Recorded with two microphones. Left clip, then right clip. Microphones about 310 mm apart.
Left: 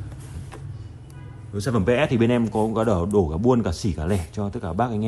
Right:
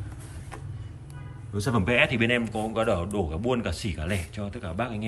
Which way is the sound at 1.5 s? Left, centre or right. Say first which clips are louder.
Left 3 dB; centre.